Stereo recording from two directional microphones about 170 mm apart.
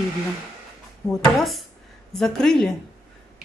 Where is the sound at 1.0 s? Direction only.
15° left (ahead or behind).